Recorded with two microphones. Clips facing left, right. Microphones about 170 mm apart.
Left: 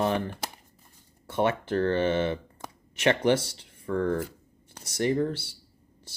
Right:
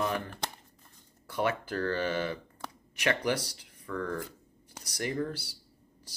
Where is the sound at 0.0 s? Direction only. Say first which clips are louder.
Left 5 dB; 30° left (ahead or behind).